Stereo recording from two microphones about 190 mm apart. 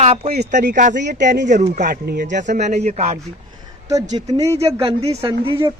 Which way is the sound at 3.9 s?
20° right (ahead or behind).